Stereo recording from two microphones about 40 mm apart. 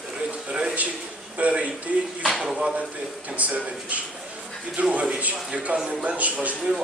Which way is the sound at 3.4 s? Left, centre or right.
Right.